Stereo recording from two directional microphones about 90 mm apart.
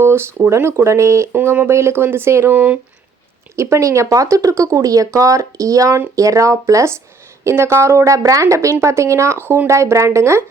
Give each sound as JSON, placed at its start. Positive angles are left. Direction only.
{"t": 0.0, "sound": "speech", "side_deg": -30}
{"t": 3.5, "sound": "speech", "side_deg": -30}